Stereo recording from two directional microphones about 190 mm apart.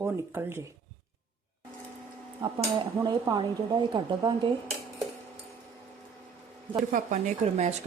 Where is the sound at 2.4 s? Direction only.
20° right (ahead or behind).